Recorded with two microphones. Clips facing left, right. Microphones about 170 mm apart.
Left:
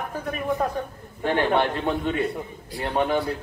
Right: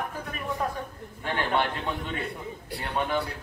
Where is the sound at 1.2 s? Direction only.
45° left (ahead or behind).